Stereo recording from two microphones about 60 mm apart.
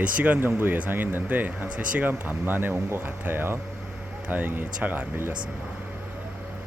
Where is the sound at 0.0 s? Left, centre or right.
Right.